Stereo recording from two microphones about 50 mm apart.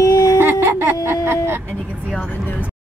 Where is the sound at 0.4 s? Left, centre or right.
Right.